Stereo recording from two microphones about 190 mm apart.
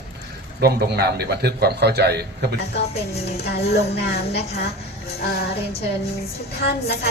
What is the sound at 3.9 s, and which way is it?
Speech, 60° left (ahead or behind).